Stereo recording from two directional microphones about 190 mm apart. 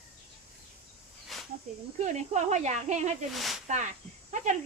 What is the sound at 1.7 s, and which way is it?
Speech, 40° right (ahead or behind).